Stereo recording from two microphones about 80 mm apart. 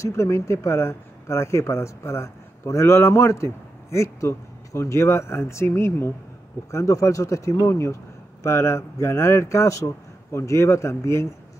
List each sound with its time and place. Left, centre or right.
0.0 s speech: left